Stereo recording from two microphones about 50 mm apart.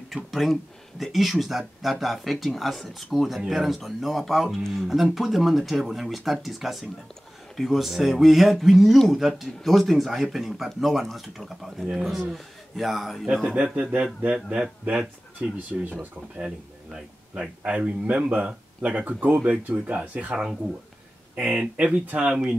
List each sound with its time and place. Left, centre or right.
0.1 s a man's voice: centre
13.7 s speech: right
16.3 s speech: centre
17.3 s speech: right
19.7 s speech: right
21.7 s speech: right